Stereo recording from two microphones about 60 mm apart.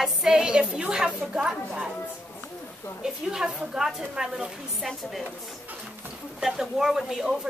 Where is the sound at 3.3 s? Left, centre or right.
Centre.